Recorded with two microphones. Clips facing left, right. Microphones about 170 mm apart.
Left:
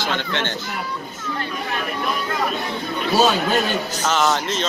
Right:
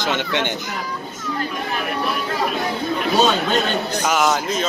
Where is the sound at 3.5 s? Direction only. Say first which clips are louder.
Right 1 dB; 10° right (ahead or behind).